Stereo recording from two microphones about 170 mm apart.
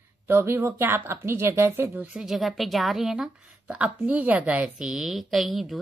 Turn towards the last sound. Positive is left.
turn(degrees=0)  # may be behind; listen again after turning